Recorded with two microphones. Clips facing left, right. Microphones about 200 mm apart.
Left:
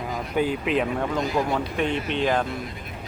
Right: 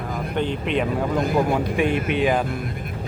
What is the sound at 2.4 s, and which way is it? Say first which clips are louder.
Speech: right 3 dB; 55° right (ahead or behind).